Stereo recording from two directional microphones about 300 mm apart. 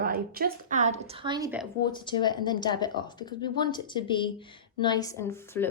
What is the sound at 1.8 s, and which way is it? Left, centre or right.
Speech, centre.